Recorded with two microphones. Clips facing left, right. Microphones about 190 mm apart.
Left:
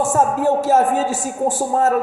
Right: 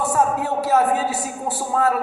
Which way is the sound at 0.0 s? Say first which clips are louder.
Left 4 dB; 45° left (ahead or behind).